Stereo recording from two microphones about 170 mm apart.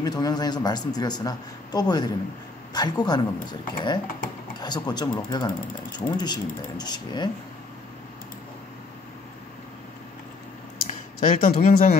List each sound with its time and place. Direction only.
0.0 s speech: 25° left (ahead or behind)
10.9 s speech: 50° left (ahead or behind)